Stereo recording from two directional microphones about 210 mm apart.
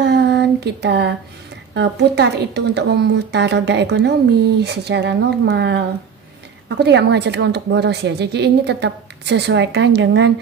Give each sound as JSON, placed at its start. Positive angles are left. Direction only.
{"t": 0.0, "sound": "a sound", "side_deg": -50}
{"t": 1.7, "sound": "a woman's voice", "side_deg": -55}
{"t": 6.8, "sound": "a woman's voice", "side_deg": -55}